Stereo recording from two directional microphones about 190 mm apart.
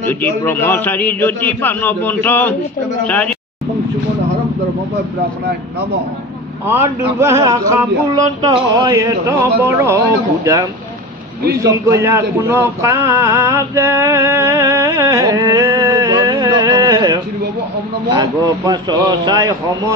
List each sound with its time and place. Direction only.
0.0 s a man's voice: 10° left (ahead or behind)
6.7 s a man's voice: 15° right (ahead or behind)